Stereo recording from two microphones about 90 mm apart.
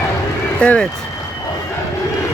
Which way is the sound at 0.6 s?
15° left (ahead or behind).